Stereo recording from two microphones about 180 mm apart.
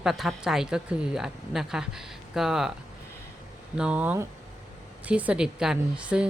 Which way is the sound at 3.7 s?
5° right (ahead or behind).